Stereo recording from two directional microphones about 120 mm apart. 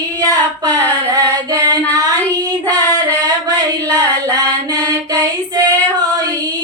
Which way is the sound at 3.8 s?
30° right (ahead or behind).